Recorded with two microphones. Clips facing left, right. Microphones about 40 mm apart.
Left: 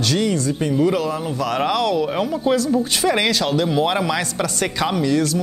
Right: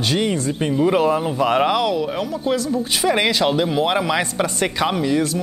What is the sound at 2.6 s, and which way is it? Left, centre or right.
Speech, centre.